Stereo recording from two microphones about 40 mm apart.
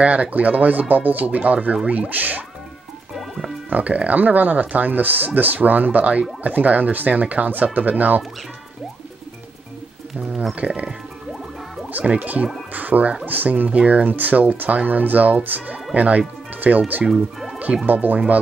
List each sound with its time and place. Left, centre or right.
0.0 s speech: right
3.2 s music: centre
3.7 s speech: right
10.5 s speech: right
12.0 s speech: right
12.7 s speech: right
13.7 s speech: right
17.1 s speech: centre
17.8 s speech: right